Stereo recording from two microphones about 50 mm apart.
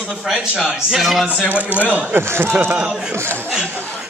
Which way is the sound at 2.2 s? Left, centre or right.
Right.